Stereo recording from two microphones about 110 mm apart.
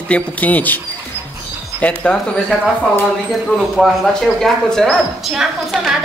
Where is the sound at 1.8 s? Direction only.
15° left (ahead or behind).